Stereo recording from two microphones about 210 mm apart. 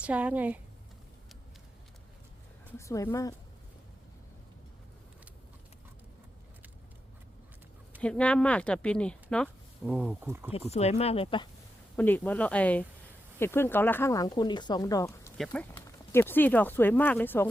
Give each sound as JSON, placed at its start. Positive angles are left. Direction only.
{"t": 0.0, "sound": "speech", "side_deg": -5}
{"t": 2.7, "sound": "speech", "side_deg": 15}
{"t": 8.0, "sound": "speech", "side_deg": 5}
{"t": 10.7, "sound": "speech", "side_deg": 30}
{"t": 11.9, "sound": "speech", "side_deg": 10}